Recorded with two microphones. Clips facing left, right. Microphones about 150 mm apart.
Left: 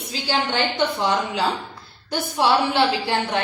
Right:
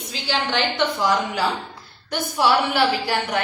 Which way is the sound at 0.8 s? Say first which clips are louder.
Right 1 dB; 30° left (ahead or behind).